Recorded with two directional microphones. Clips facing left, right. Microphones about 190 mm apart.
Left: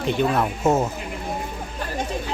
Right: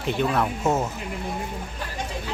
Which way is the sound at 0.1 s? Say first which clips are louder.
Left 2 dB; centre (ahead or behind).